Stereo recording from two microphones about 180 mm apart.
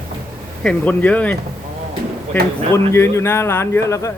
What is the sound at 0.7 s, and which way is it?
Speech, 10° left (ahead or behind).